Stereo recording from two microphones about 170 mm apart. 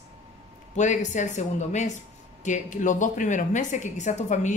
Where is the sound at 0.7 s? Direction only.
45° left (ahead or behind).